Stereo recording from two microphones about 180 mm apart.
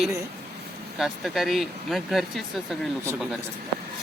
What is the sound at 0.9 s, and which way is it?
Speech, centre (ahead or behind).